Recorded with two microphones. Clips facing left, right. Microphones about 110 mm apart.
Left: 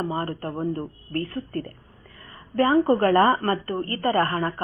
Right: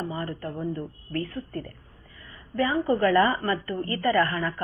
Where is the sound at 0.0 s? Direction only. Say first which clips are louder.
Left 4 dB; 50° left (ahead or behind).